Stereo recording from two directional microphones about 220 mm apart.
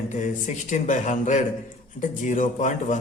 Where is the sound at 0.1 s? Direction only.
35° left (ahead or behind).